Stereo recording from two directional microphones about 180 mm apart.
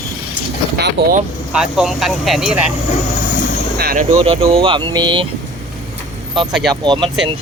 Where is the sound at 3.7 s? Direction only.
50° right (ahead or behind).